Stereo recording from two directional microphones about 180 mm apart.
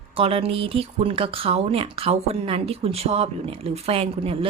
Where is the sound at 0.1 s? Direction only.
30° right (ahead or behind).